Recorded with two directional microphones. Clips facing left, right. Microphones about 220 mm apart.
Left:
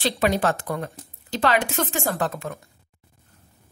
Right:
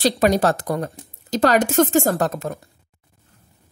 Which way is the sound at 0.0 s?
40° right (ahead or behind).